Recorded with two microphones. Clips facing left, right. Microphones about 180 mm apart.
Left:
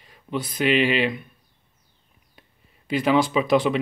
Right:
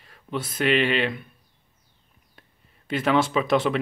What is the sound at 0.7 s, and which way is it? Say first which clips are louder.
Speech: left 2 dB; 5° left (ahead or behind).